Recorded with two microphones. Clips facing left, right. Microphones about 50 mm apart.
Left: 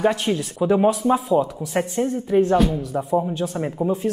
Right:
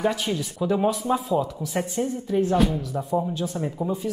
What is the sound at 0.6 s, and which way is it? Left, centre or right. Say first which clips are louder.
A woman's voice: left 5 dB; centre.